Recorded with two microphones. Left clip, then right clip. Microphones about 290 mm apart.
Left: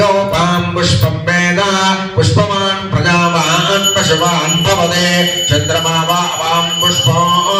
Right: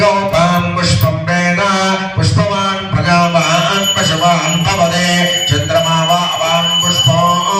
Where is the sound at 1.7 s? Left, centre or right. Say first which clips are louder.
Left 2 dB; left.